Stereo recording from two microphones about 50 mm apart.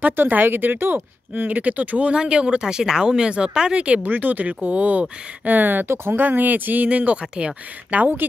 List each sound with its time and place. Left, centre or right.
0.3 s speech: right
4.0 s speech: right